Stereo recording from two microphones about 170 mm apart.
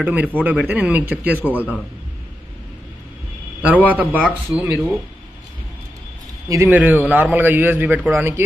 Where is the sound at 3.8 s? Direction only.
10° right (ahead or behind).